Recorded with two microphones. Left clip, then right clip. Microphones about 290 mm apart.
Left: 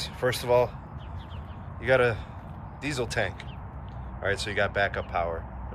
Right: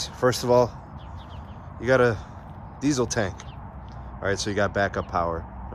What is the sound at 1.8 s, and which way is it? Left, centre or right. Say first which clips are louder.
Speech: right 3 dB; centre.